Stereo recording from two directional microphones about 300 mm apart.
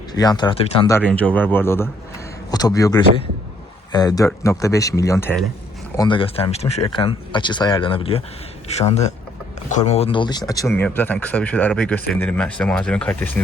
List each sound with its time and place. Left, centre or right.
0.1 s speech: centre
1.0 s speech: centre